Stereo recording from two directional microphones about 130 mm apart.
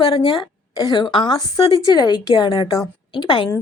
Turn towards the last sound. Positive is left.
turn(degrees=35)  # may be behind; listen again after turning